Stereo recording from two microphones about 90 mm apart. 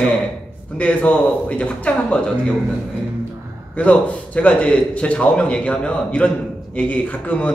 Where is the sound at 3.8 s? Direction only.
15° left (ahead or behind).